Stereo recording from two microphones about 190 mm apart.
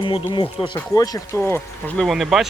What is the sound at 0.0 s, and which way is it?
Speech, 25° left (ahead or behind).